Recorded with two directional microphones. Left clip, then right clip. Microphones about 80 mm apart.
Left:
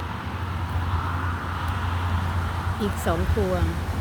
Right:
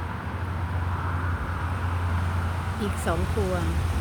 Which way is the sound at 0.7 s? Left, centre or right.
Left.